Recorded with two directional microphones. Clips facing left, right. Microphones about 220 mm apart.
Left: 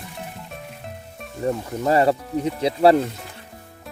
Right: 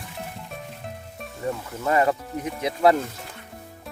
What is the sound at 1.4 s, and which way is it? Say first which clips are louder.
Speech: left 5 dB; 35° left (ahead or behind).